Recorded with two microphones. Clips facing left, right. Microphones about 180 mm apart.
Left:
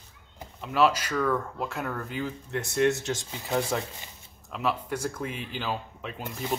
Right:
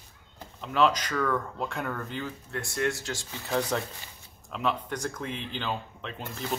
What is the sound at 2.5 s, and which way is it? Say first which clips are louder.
Speech: left 6 dB; 20° left (ahead or behind).